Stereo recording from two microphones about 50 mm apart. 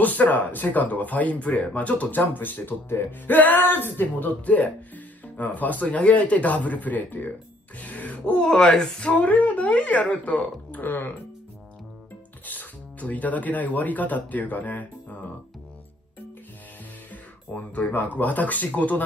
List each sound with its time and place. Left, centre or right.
0.0 s speech: left
7.8 s music: left
8.5 s speech: centre
9.0 s a woman's voice: left
12.4 s speech: left
17.1 s speech: left